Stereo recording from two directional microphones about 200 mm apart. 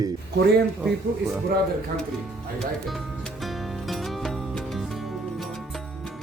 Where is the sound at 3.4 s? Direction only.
Centre (ahead or behind).